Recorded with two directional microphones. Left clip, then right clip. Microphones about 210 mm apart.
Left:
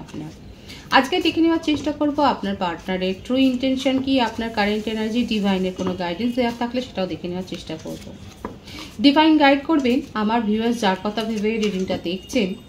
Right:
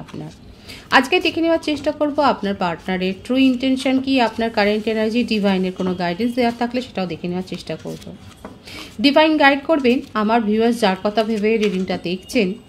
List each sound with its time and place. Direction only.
0.8 s a woman's voice: 55° right (ahead or behind)
9.0 s a woman's voice: 55° right (ahead or behind)